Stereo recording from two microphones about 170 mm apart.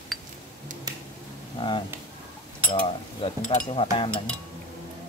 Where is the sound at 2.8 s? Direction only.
35° left (ahead or behind).